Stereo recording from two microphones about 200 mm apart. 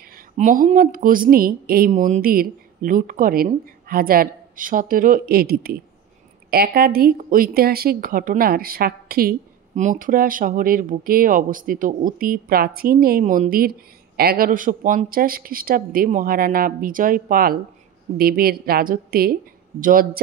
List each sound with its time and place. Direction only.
0.4 s speech: 40° right (ahead or behind)